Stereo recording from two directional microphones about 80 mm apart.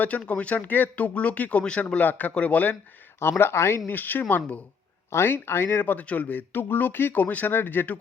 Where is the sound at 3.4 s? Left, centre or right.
Left.